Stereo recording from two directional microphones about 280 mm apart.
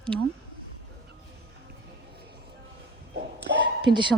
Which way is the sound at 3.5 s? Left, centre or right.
Right.